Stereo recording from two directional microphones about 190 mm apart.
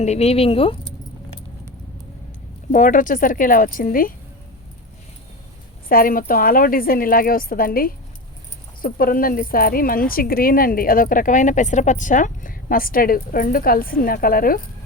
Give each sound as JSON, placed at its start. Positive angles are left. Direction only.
{"t": 0.0, "sound": "speech", "side_deg": 35}
{"t": 2.7, "sound": "a woman's voice", "side_deg": 45}
{"t": 5.9, "sound": "a woman's voice", "side_deg": 50}